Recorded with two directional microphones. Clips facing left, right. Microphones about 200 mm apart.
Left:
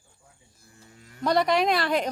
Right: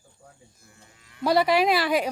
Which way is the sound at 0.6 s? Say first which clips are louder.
Left 3 dB; 40° left (ahead or behind).